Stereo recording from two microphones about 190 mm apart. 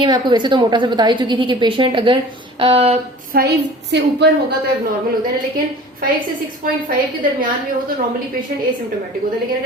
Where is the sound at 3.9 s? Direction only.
60° right (ahead or behind).